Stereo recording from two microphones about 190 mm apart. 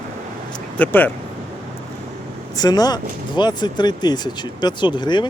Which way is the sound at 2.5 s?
20° left (ahead or behind).